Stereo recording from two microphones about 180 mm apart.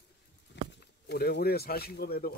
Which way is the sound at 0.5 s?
75° left (ahead or behind).